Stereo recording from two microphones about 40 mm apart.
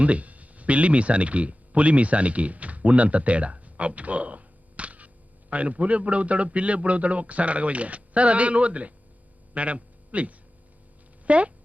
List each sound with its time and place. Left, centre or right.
0.0 s speech: right